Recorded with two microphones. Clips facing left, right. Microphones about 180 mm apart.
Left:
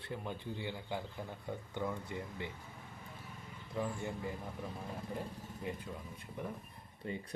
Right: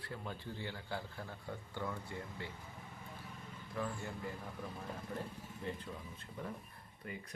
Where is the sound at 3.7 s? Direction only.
20° left (ahead or behind).